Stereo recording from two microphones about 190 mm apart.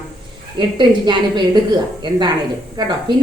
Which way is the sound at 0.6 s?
25° right (ahead or behind).